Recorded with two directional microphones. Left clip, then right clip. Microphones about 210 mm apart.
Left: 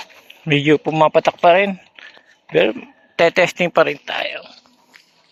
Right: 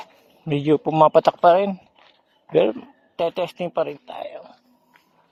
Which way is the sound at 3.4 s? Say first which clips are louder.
Left 9 dB; 20° left (ahead or behind).